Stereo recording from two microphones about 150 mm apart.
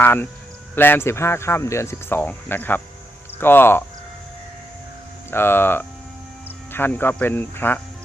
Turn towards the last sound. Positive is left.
turn(degrees=15)  # may be behind; listen again after turning